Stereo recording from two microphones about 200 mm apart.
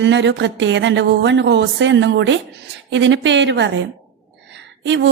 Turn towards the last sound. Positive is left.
turn(degrees=-65)  # may be behind; listen again after turning